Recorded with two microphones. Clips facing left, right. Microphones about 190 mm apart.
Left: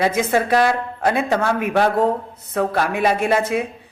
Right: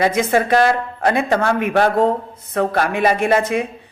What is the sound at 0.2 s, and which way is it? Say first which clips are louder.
A man's voice: right 2 dB; 5° left (ahead or behind).